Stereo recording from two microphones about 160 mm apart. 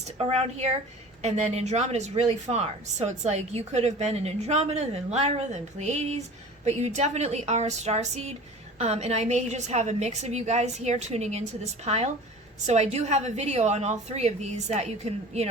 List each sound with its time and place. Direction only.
0.3 s speech: 40° right (ahead or behind)